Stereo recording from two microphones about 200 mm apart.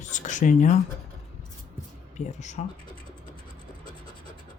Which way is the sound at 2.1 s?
35° left (ahead or behind).